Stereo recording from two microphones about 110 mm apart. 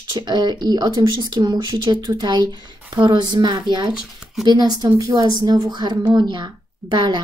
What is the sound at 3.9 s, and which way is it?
Speech, 5° right (ahead or behind).